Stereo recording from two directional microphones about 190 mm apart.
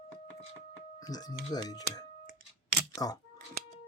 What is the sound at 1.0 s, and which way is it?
Speech, 20° left (ahead or behind).